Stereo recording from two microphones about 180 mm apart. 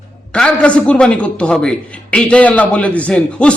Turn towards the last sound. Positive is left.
turn(degrees=5)  # may be behind; listen again after turning